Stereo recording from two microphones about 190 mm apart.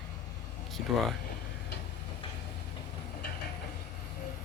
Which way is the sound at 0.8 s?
50° left (ahead or behind).